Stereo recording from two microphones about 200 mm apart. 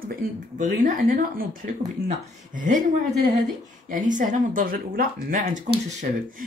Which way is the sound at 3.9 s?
40° right (ahead or behind).